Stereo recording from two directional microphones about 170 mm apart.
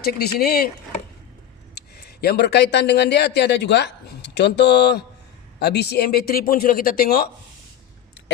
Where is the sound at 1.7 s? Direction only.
75° left (ahead or behind).